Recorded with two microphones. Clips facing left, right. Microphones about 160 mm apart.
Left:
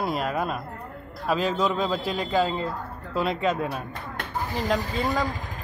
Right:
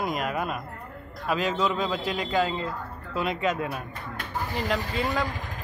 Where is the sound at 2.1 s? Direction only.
10° right (ahead or behind).